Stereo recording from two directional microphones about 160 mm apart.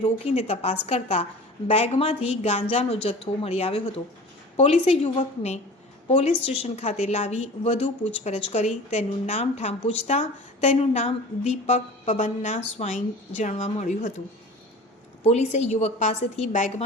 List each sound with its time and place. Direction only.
0.3 s a woman's voice: 40° left (ahead or behind)
15.2 s a woman's voice: 45° left (ahead or behind)